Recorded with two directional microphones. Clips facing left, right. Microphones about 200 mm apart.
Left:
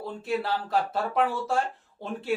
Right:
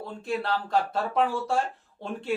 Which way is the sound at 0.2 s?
5° left (ahead or behind).